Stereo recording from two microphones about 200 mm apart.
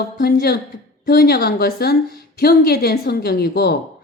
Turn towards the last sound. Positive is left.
turn(degrees=55)  # may be behind; listen again after turning